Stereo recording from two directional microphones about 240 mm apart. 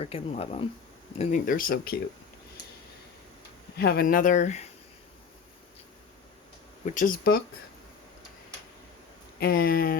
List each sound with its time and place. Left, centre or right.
0.0 s speech: left
3.8 s speech: left
6.8 s speech: left
9.4 s speech: left